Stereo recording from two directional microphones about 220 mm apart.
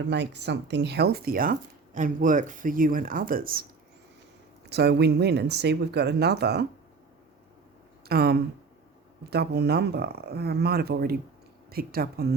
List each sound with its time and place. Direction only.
0.1 s speech: 50° right (ahead or behind)
4.7 s speech: 50° right (ahead or behind)
8.0 s speech: 45° right (ahead or behind)